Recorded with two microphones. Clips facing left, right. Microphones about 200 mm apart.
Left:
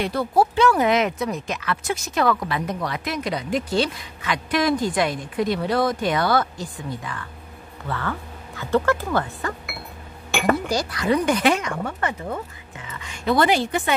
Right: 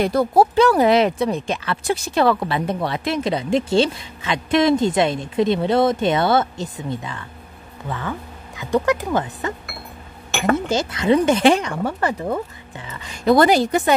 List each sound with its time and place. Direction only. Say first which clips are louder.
0.0 s speech: right 4 dB; 45° right (ahead or behind); by 9.5 s 20° right (ahead or behind)
10.5 s speech: right 5 dB; 25° right (ahead or behind)
12.7 s a sound: right 3 dB; 35° right (ahead or behind)